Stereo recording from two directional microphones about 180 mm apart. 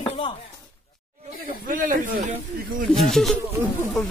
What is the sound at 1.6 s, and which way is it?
Speech, 50° right (ahead or behind).